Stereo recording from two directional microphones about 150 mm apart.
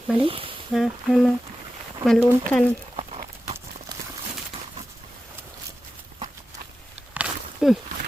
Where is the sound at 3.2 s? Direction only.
30° right (ahead or behind).